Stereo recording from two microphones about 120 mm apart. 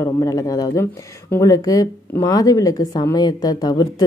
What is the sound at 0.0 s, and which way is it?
Speech, 30° left (ahead or behind).